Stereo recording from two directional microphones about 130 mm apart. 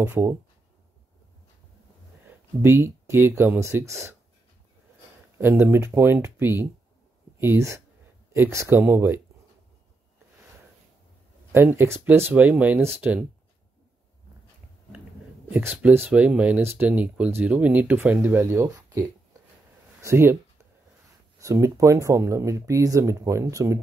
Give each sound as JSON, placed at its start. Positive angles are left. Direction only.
{"t": 0.0, "sound": "speech", "side_deg": -20}
{"t": 2.6, "sound": "speech", "side_deg": -20}
{"t": 5.4, "sound": "speech", "side_deg": -20}
{"t": 11.5, "sound": "speech", "side_deg": -20}
{"t": 15.5, "sound": "speech", "side_deg": -10}
{"t": 21.4, "sound": "speech", "side_deg": -25}